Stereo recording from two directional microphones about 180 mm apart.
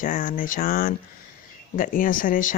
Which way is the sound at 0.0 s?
50° left (ahead or behind).